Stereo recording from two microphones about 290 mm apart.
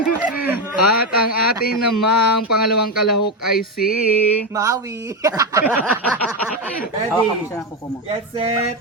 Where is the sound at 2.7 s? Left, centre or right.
Left.